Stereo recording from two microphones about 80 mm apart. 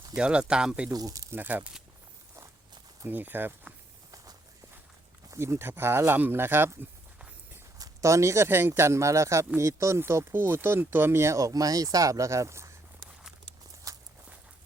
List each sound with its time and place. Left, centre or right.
0.2 s speech: centre
0.9 s speech: right
1.4 s speech: right
3.1 s speech: right
5.3 s speech: right
7.8 s speech: right
13.9 s walk: right